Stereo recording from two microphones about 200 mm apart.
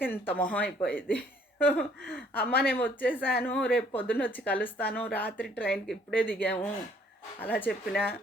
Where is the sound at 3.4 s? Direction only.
10° left (ahead or behind).